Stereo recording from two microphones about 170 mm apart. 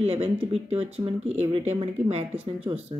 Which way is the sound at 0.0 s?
35° right (ahead or behind).